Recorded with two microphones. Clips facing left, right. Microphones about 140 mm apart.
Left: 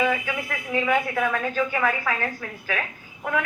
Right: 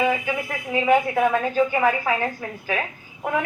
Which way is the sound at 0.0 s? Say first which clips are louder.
Right 2 dB; 20° right (ahead or behind).